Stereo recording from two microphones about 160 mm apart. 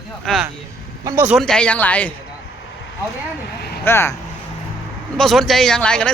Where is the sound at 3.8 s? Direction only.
15° left (ahead or behind).